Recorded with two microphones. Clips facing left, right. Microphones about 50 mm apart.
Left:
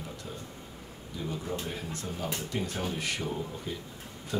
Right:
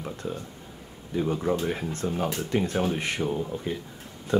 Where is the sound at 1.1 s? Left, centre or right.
Right.